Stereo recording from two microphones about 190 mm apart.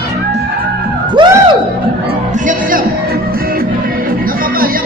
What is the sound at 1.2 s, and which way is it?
Music, 25° right (ahead or behind).